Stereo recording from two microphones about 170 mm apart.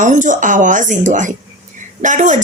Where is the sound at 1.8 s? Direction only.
45° right (ahead or behind).